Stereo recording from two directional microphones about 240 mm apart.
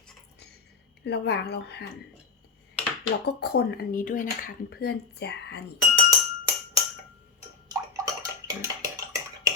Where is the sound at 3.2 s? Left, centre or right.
Left.